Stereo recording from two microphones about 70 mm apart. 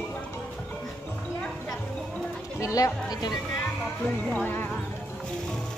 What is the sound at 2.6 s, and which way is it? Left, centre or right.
Speech, left.